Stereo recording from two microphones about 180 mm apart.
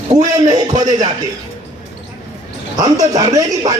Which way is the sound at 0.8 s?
20° right (ahead or behind).